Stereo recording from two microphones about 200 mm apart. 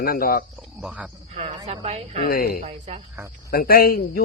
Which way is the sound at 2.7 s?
30° right (ahead or behind).